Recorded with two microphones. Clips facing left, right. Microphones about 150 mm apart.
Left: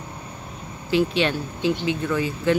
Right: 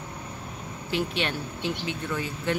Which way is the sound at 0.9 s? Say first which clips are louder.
Left 8 dB; 90° left.